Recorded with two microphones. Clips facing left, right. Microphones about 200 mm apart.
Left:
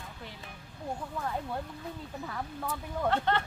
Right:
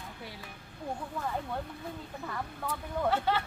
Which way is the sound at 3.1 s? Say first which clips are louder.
Left 1 dB; 5° right (ahead or behind).